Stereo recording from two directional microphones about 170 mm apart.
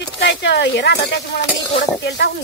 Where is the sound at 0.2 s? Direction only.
90° left.